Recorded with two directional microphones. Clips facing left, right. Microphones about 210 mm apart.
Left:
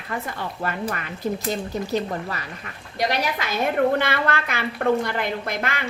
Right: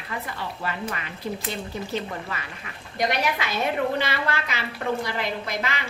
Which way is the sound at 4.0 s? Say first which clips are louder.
Left 3 dB; 55° left (ahead or behind).